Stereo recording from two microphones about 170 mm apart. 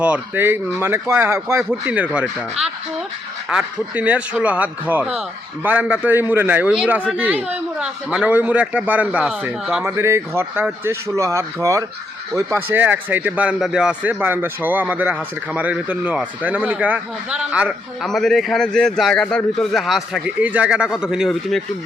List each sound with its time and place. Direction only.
0.0 s a man's voice: 10° right (ahead or behind)